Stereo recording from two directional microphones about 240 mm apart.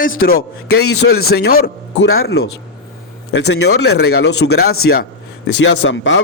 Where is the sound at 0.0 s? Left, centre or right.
Left.